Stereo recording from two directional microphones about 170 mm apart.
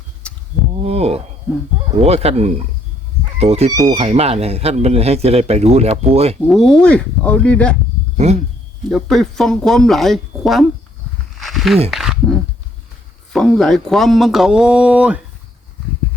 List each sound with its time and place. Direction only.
0.7 s a sound: 35° right (ahead or behind)
1.9 s speech: 35° right (ahead or behind)
3.8 s speech: 20° right (ahead or behind)
4.0 s speech: 40° right (ahead or behind)
6.5 s speech: 5° left (ahead or behind)
8.1 s speech: 40° right (ahead or behind)
8.9 s speech: centre (ahead or behind)
11.3 s a sound: centre (ahead or behind)
11.9 s speech: centre (ahead or behind)